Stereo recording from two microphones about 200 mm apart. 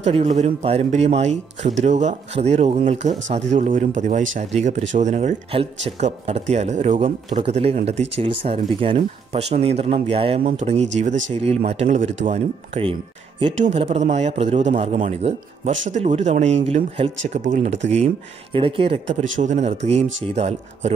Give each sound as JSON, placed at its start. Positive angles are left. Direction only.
{"t": 0.0, "sound": "speech", "side_deg": -30}
{"t": 17.3, "sound": "speech", "side_deg": -40}
{"t": 19.0, "sound": "speech", "side_deg": -70}
{"t": 19.4, "sound": "speech", "side_deg": -35}